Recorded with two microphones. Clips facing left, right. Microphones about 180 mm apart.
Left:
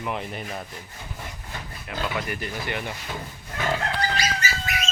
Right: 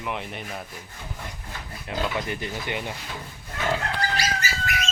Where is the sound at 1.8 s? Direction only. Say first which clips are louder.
Right 2 dB; 20° right (ahead or behind).